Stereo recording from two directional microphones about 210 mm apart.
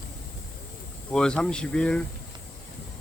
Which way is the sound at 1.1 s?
5° left (ahead or behind).